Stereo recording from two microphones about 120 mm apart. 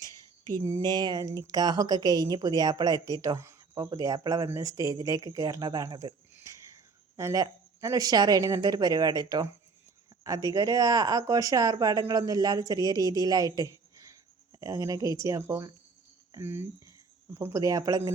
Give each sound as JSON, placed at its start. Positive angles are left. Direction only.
{"t": 0.6, "sound": "speech", "side_deg": -30}
{"t": 6.4, "sound": "a sound", "side_deg": -25}
{"t": 7.4, "sound": "speech", "side_deg": -30}